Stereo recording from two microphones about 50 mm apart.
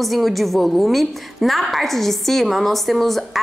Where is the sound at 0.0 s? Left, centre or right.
Centre.